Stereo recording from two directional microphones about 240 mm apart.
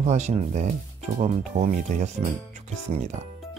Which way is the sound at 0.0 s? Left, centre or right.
Right.